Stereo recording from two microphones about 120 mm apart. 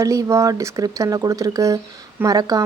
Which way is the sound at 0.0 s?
25° right (ahead or behind).